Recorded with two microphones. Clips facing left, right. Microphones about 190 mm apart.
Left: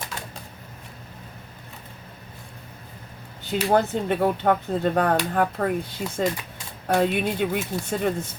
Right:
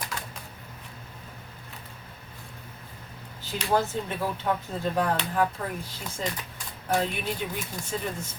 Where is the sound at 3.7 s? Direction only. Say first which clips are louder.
Left 5 dB; 60° left (ahead or behind).